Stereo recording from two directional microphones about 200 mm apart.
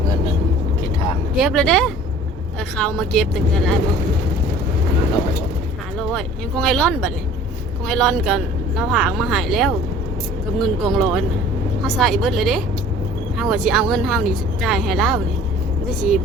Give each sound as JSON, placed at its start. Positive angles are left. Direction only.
{"t": 1.4, "sound": "speech", "side_deg": 0}
{"t": 6.0, "sound": "speech", "side_deg": 0}